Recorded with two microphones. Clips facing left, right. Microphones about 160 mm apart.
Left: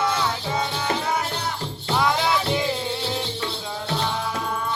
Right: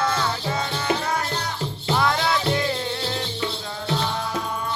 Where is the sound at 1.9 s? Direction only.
10° left (ahead or behind).